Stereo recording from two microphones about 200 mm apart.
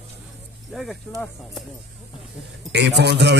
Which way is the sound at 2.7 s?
55° right (ahead or behind).